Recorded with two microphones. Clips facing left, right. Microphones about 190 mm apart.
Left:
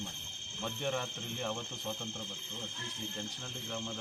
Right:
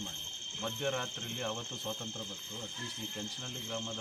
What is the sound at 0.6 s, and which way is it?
Speech, centre (ahead or behind).